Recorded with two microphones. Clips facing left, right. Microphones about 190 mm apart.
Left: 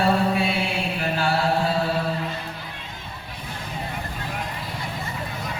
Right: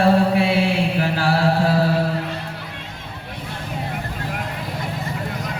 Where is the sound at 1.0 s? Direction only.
85° right.